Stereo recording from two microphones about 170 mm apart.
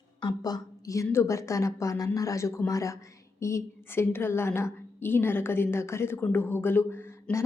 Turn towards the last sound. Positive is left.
turn(degrees=15)  # may be behind; listen again after turning